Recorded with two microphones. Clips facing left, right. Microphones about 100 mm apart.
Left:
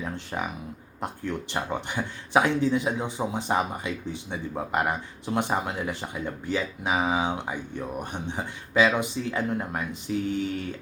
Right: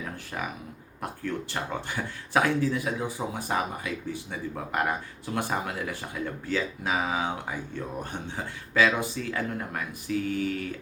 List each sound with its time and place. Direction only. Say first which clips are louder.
0.0 s speech: left 3 dB; 20° left (ahead or behind)